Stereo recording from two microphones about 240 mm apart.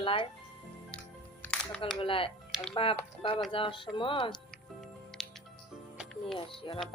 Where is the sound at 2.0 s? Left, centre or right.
Left.